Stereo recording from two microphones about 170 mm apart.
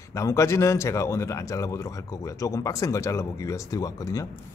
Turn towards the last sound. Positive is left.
turn(degrees=20)  # may be behind; listen again after turning